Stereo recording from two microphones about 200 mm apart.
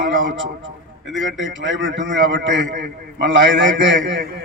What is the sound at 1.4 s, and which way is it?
A man's voice, 65° right (ahead or behind).